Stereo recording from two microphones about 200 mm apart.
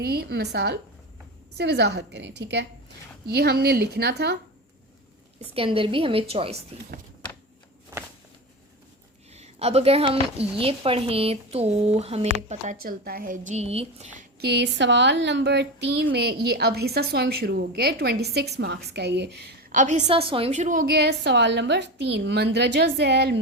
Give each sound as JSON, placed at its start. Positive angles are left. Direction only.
{"t": 0.0, "sound": "speech", "side_deg": -55}
{"t": 5.5, "sound": "a woman's voice", "side_deg": -25}
{"t": 9.3, "sound": "a woman's voice", "side_deg": -30}
{"t": 12.8, "sound": "a woman's voice", "side_deg": -45}
{"t": 14.4, "sound": "speech", "side_deg": -60}
{"t": 19.7, "sound": "speech", "side_deg": -35}